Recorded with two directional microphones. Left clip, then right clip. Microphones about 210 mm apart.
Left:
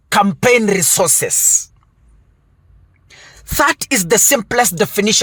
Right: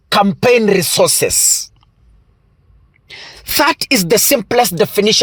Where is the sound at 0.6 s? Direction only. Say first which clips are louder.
Right 3 dB; 25° right (ahead or behind).